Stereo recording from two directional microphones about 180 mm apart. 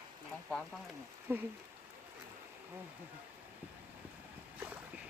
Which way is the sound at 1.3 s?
15° right (ahead or behind).